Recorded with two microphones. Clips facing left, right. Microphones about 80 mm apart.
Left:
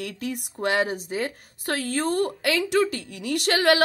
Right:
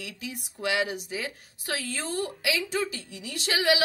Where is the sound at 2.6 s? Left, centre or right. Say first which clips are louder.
Left 8 dB; left.